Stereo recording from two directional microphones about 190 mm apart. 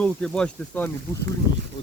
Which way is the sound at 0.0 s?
5° left (ahead or behind).